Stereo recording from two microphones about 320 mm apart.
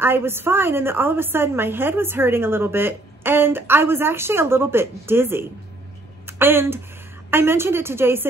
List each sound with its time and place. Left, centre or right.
0.0 s a woman's voice: centre